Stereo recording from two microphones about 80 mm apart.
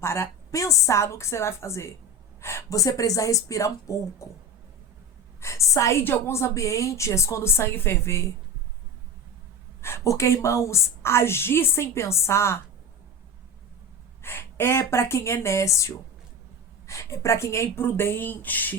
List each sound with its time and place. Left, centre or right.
0.0 s a woman's voice: left
5.4 s a woman's voice: left
6.0 s a woman's voice: left
9.8 s a woman's voice: left
14.2 s a woman's voice: left